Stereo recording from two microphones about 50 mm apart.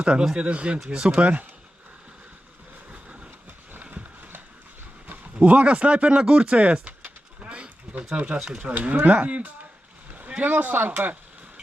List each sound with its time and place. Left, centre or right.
0.0 s speech: centre
1.2 s speech: right
5.0 s speech: right
7.4 s a sound: right
8.4 s speech: right